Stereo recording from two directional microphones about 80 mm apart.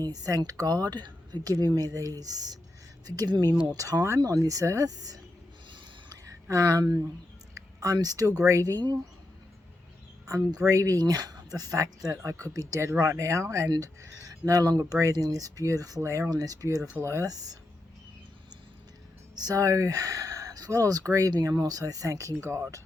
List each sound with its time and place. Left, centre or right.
0.0 s speech: right
1.5 s speech: right
6.2 s speech: right
10.2 s speech: right
11.0 s speech: right
16.3 s speech: right
17.3 s speech: right
19.4 s speech: right
21.4 s speech: right